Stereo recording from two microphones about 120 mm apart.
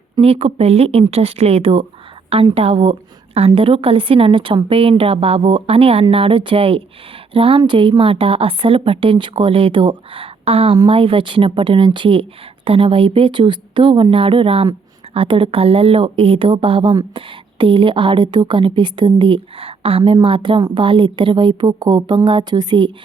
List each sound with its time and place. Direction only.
0.2 s a woman's voice: 55° right (ahead or behind); by 22.9 s 40° right (ahead or behind)